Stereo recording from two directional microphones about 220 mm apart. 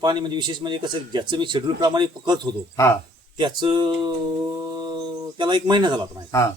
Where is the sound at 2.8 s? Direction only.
15° left (ahead or behind).